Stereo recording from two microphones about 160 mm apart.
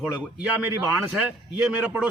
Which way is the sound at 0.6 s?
10° right (ahead or behind).